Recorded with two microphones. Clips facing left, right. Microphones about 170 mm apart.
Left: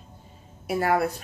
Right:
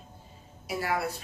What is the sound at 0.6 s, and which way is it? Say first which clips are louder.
Speech: left 7 dB; 55° left (ahead or behind).